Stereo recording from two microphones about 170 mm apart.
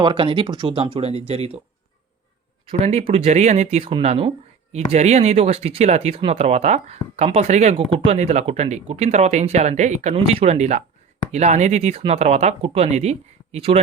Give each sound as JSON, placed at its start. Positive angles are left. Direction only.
{"t": 0.0, "sound": "speech", "side_deg": -30}
{"t": 2.6, "sound": "speech", "side_deg": -40}